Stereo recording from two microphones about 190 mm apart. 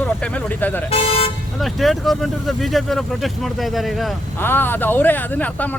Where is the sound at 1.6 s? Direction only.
Centre (ahead or behind).